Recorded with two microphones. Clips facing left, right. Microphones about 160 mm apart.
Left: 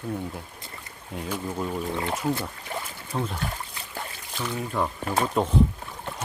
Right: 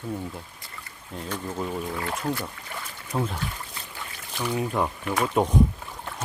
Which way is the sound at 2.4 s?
30° left (ahead or behind).